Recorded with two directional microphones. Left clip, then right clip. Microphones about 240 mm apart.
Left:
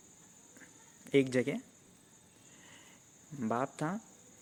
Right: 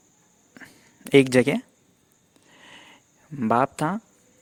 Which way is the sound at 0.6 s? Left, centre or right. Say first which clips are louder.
Right 12 dB; right.